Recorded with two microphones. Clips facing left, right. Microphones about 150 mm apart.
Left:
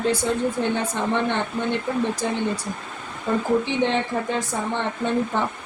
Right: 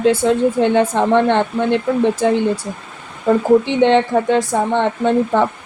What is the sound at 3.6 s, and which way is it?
Speech, 80° right.